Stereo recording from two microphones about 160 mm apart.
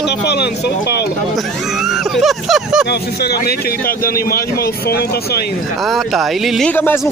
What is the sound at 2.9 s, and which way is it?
Speech, 90° left.